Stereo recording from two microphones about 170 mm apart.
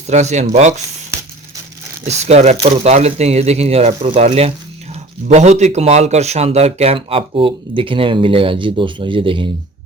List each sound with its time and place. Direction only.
0.1 s speech: 45° right (ahead or behind)
2.0 s speech: 40° right (ahead or behind)